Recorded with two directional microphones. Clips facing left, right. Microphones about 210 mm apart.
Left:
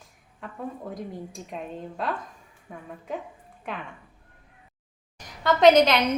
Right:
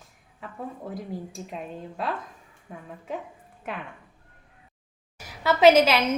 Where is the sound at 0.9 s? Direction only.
Centre (ahead or behind).